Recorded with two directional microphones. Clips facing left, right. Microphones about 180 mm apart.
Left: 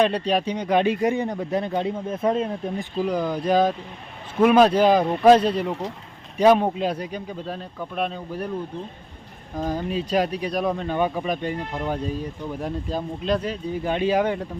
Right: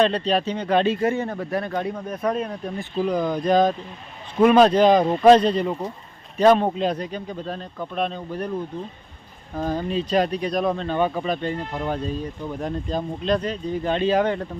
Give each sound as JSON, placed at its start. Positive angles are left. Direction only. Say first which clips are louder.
{"t": 0.0, "sound": "speech", "louder": "right 1 dB", "side_deg": 10}
{"t": 3.0, "sound": "speech", "louder": "right 2 dB", "side_deg": 10}
{"t": 9.6, "sound": "speech", "louder": "right 1 dB", "side_deg": 10}
{"t": 11.7, "sound": "speech", "louder": "even", "side_deg": 0}